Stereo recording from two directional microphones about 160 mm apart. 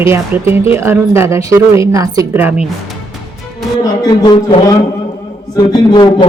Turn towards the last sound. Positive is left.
turn(degrees=25)  # may be behind; listen again after turning